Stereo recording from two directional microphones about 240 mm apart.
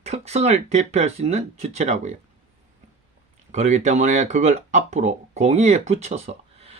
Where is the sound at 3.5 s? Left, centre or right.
Right.